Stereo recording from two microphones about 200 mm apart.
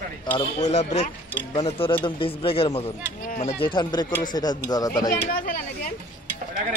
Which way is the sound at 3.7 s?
20° left (ahead or behind).